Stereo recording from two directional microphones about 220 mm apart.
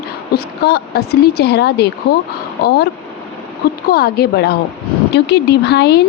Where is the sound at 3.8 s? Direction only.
45° left (ahead or behind).